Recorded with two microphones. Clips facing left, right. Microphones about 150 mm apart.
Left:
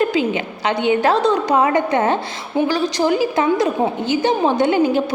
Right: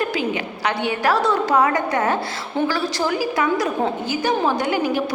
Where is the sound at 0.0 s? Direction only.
20° left (ahead or behind).